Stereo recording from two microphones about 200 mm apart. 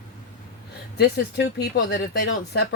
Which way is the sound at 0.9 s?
55° left (ahead or behind).